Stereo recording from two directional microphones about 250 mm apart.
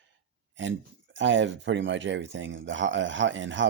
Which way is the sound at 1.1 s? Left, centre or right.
Right.